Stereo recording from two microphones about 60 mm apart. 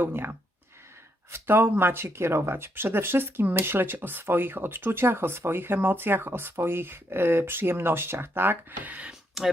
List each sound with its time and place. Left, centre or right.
0.0 s speech: right
9.4 s speech: centre